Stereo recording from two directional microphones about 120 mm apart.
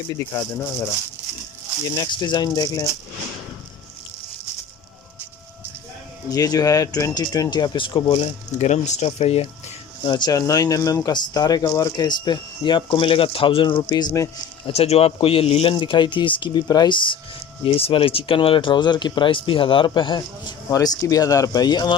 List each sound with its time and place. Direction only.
0.1 s speech: 25° left (ahead or behind)
2.0 s speech: 40° left (ahead or behind)
6.3 s speech: 30° left (ahead or behind)
8.2 s speech: 70° left (ahead or behind)
10.0 s speech: 40° left (ahead or behind)
14.7 s speech: 55° left (ahead or behind); by 21.9 s 35° left (ahead or behind)